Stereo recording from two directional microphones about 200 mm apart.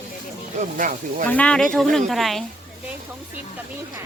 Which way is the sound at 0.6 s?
40° right (ahead or behind).